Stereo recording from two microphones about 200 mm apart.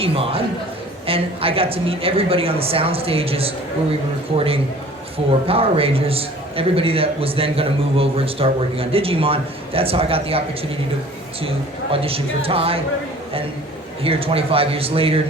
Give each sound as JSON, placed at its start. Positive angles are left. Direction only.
{"t": 0.0, "sound": "a man's voice", "side_deg": -30}
{"t": 14.0, "sound": "a man's voice", "side_deg": -30}